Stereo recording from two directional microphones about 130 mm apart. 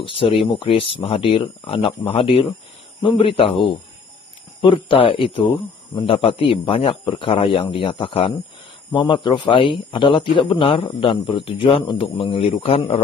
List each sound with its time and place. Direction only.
0.0 s a man's voice: 45° left (ahead or behind)